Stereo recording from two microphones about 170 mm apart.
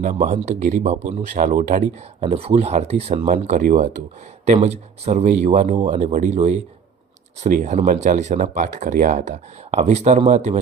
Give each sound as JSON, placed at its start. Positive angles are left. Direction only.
{"t": 0.0, "sound": "speech", "side_deg": -45}
{"t": 2.2, "sound": "speech", "side_deg": -35}